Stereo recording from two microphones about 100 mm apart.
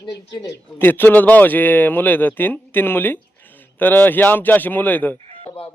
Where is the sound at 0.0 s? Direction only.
40° left (ahead or behind).